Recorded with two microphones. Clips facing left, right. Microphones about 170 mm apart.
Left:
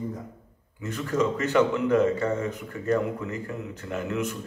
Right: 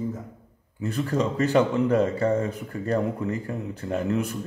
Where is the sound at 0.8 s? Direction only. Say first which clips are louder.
Right 1 dB; 35° right (ahead or behind).